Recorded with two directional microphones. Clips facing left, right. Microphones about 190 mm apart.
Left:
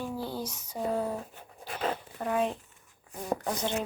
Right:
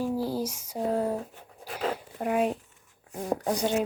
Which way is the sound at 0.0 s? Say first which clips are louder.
Right 6 dB; 35° right (ahead or behind).